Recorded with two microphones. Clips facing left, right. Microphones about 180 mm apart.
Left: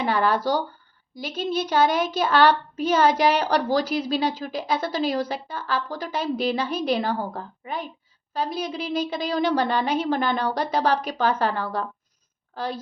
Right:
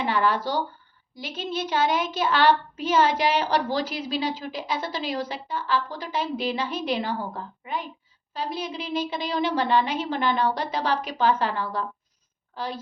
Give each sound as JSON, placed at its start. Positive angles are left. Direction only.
{"t": 0.0, "sound": "a woman's voice", "side_deg": 40}